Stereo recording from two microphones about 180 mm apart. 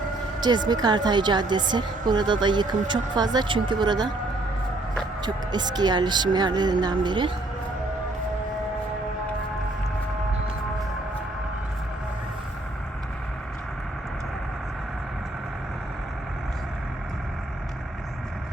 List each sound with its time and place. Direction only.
0.4 s a woman's voice: 25° right (ahead or behind)
5.2 s a woman's voice: 25° right (ahead or behind)